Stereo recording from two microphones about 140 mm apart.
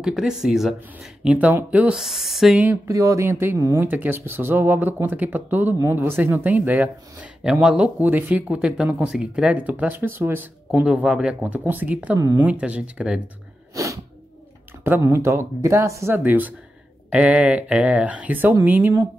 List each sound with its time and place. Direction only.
0.0 s speech: 5° right (ahead or behind)
2.9 s speech: 20° right (ahead or behind)
12.2 s speech: 25° right (ahead or behind)
12.4 s speech: 10° right (ahead or behind)
14.8 s speech: 20° right (ahead or behind)